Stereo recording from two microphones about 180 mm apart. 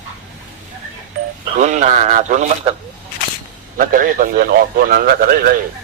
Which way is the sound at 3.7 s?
50° right (ahead or behind).